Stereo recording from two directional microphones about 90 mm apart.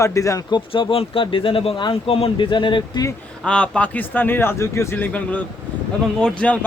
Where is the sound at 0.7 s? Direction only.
85° left; by 3.0 s 65° left (ahead or behind).